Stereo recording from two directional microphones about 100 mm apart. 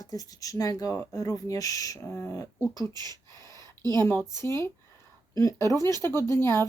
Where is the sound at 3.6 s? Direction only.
40° right (ahead or behind).